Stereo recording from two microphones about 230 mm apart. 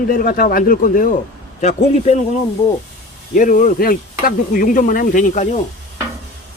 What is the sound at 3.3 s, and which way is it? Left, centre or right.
Speech, left.